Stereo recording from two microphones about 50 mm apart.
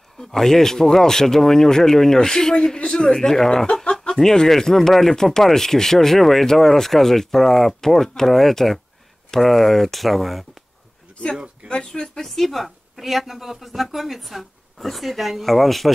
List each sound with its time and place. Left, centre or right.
0.2 s a woman's voice: centre
11.3 s speech: centre
11.7 s speech: centre
12.3 s a woman's voice: centre